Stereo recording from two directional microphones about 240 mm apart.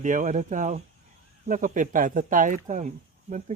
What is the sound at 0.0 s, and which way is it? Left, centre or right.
Speech, right.